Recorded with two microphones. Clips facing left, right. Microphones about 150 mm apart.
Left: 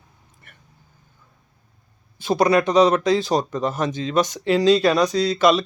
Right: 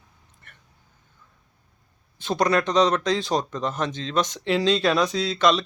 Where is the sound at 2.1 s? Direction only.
5° left (ahead or behind).